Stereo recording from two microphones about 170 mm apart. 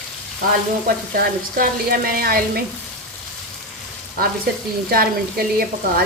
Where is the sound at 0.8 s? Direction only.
60° right (ahead or behind).